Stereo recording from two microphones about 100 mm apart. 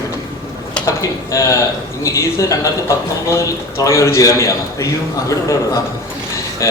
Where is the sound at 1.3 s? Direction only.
30° left (ahead or behind).